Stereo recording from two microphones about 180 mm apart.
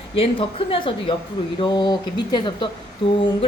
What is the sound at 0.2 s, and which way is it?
A woman's voice, 30° left (ahead or behind).